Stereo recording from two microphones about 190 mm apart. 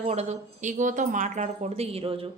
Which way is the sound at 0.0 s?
35° right (ahead or behind).